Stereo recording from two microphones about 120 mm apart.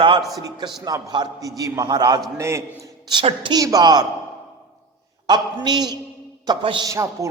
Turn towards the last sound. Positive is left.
turn(degrees=-25)  # may be behind; listen again after turning